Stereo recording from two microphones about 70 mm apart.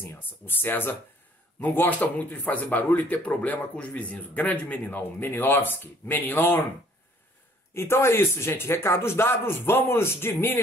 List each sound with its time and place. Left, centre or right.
0.0 s speech: left
7.7 s speech: left